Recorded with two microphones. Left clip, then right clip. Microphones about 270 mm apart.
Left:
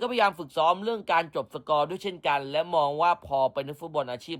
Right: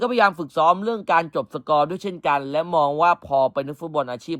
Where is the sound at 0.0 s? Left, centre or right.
Centre.